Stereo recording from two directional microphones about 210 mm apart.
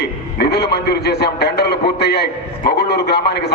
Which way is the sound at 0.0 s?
50° left (ahead or behind).